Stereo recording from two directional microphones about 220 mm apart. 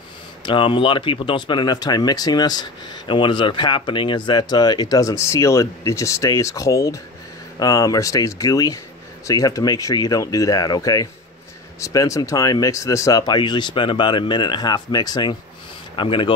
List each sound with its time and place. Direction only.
0.4 s speech: 20° left (ahead or behind)